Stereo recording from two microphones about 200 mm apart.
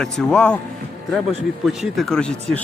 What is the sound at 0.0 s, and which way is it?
Speech, 5° left (ahead or behind).